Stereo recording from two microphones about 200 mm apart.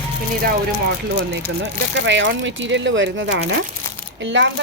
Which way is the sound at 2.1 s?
65° right (ahead or behind).